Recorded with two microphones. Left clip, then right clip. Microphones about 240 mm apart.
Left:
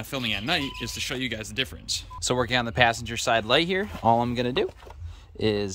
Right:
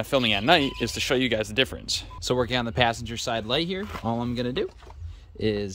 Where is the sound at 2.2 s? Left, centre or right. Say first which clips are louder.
Left 1 dB; centre.